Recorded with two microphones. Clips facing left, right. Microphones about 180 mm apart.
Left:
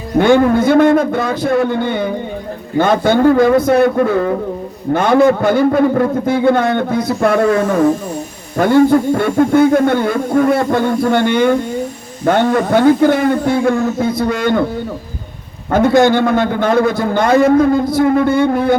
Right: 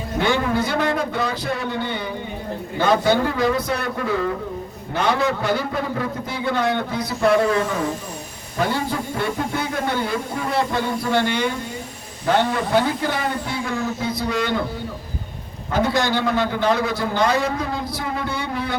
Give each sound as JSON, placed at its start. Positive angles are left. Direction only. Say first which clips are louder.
{"t": 0.2, "sound": "a man's voice", "louder": "left 11 dB", "side_deg": 50}
{"t": 15.7, "sound": "a man's voice", "louder": "left 10 dB", "side_deg": 50}